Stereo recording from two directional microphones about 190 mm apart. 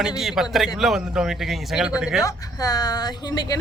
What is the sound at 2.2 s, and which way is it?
Speech, 20° left (ahead or behind).